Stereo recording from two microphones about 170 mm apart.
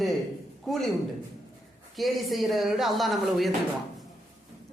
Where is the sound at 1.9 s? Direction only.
Centre (ahead or behind).